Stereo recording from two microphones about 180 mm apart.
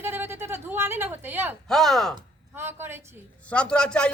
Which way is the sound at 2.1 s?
15° right (ahead or behind).